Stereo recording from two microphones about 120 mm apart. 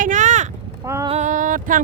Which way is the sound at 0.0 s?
90° right.